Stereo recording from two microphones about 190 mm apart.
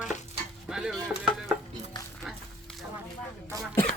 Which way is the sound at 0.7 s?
Centre (ahead or behind).